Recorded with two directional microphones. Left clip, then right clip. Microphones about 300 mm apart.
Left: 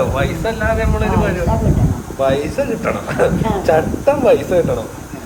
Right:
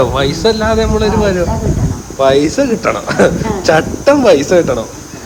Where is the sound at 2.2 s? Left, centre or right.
Right.